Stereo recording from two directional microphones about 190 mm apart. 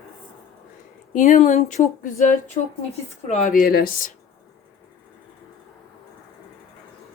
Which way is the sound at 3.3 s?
40° left (ahead or behind).